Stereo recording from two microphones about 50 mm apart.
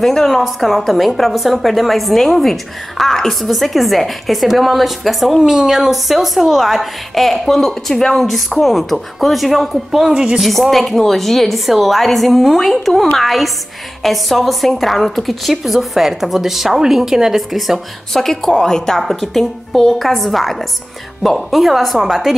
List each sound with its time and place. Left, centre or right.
0.0 s a woman's voice: centre
10.1 s a woman's voice: right
10.4 s a woman's voice: centre